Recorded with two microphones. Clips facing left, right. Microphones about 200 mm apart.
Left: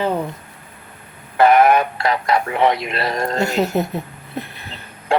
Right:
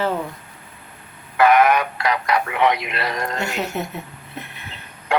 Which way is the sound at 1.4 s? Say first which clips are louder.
Left 2 dB; 30° left (ahead or behind).